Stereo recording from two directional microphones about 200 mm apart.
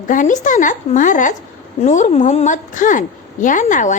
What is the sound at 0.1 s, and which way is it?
Speech, 40° left (ahead or behind).